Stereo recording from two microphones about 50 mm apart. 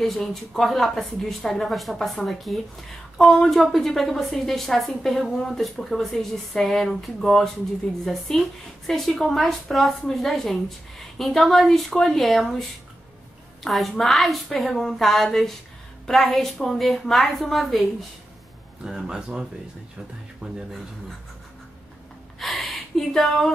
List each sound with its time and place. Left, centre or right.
0.0 s a woman's voice: centre
18.9 s speech: centre
20.4 s speech: right
22.4 s a sound: centre